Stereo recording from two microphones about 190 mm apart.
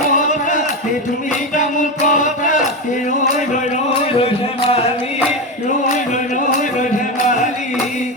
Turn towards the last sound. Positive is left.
turn(degrees=40)  # may be behind; listen again after turning